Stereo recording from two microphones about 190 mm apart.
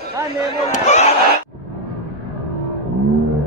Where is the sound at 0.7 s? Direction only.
35° left (ahead or behind).